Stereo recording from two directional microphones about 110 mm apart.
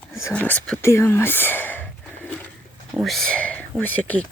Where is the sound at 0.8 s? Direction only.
25° left (ahead or behind).